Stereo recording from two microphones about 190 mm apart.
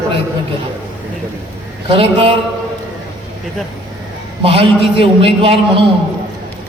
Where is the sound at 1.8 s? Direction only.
30° right (ahead or behind).